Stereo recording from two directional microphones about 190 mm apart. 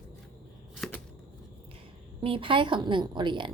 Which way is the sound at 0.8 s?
5° left (ahead or behind).